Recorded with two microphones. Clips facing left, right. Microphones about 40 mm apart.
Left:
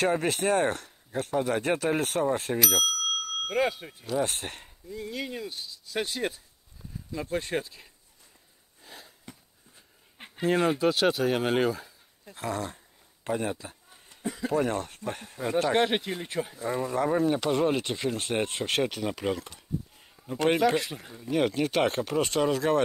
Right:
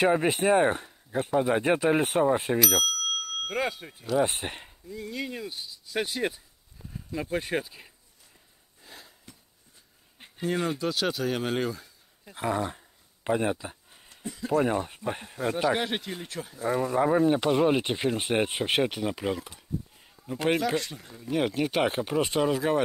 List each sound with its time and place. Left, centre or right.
0.0 s speech: centre
2.6 s speech: centre
4.2 s speech: centre
4.8 s speech: centre
8.8 s a sound: centre
10.1 s a sound: left
10.4 s speech: centre
12.3 s a sound: centre
14.6 s speech: centre
15.8 s speech: centre
16.6 s speech: centre
21.2 s speech: centre